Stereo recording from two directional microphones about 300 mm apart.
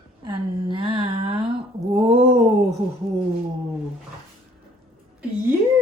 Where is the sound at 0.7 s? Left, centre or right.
Centre.